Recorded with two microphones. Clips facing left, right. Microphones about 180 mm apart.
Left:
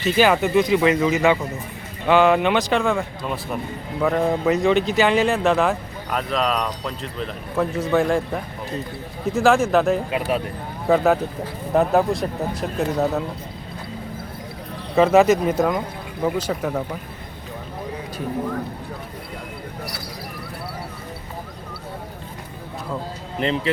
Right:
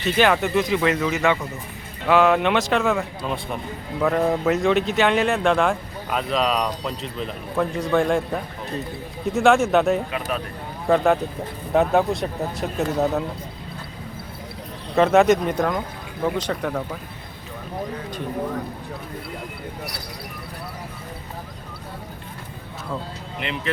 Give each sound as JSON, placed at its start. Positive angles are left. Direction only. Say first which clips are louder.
{"t": 0.0, "sound": "speech", "louder": "left 2 dB", "side_deg": 0}
{"t": 10.1, "sound": "speech", "louder": "left 4 dB", "side_deg": 20}
{"t": 10.8, "sound": "speech", "louder": "left 1 dB", "side_deg": 0}
{"t": 14.9, "sound": "speech", "louder": "left 1 dB", "side_deg": 0}
{"t": 23.4, "sound": "speech", "louder": "left 6 dB", "side_deg": 35}